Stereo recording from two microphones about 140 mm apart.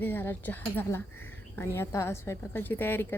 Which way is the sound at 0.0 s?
15° left (ahead or behind).